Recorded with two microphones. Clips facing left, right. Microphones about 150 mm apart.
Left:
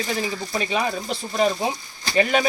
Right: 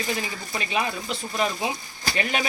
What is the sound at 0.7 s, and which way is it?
Speech, 35° left (ahead or behind).